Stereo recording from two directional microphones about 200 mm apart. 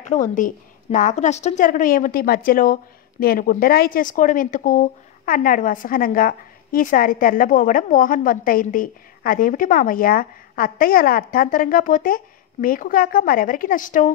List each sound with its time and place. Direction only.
0.0 s a woman's voice: 40° left (ahead or behind)